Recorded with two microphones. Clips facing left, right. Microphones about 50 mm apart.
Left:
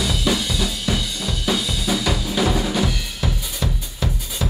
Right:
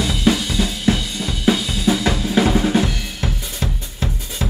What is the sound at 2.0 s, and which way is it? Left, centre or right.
Drum kit, right.